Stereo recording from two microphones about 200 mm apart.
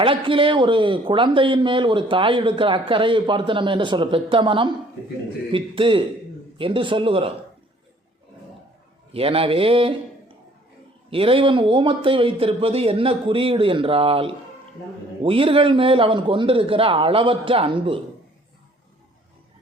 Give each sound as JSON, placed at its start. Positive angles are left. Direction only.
{"t": 0.0, "sound": "speech", "side_deg": -25}
{"t": 9.1, "sound": "speech", "side_deg": -30}
{"t": 11.1, "sound": "speech", "side_deg": -25}